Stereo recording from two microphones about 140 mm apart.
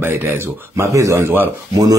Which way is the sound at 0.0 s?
15° right (ahead or behind).